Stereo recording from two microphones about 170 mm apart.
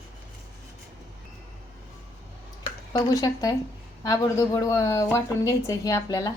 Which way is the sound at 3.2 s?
20° left (ahead or behind).